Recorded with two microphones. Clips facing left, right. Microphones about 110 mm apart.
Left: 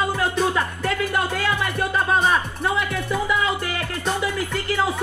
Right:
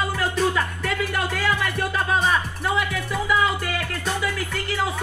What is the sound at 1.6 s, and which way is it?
Speech, centre (ahead or behind).